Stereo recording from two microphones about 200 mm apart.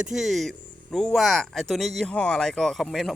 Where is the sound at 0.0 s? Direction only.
Centre (ahead or behind).